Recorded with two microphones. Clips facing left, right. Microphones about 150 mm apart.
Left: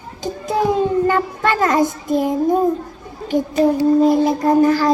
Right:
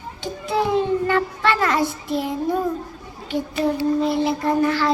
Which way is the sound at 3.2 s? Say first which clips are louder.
Left 6 dB; 45° left (ahead or behind).